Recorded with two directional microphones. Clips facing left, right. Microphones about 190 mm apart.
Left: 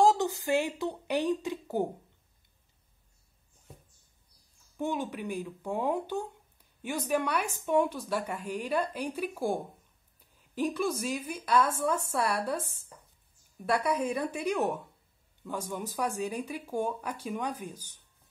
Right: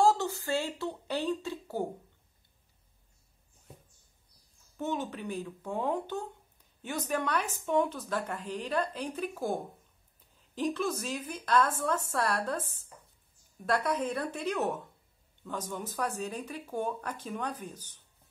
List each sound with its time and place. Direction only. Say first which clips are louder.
0.0 s speech: left 2 dB; 15° left (ahead or behind)
4.7 s speech: left 2 dB; 10° left (ahead or behind)